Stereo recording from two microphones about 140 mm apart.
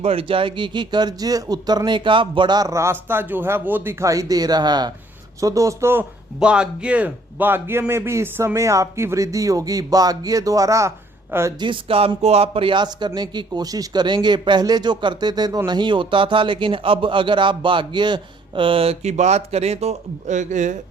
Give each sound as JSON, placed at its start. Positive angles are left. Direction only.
{"t": 0.0, "sound": "speech", "side_deg": -45}
{"t": 11.6, "sound": "speech", "side_deg": -40}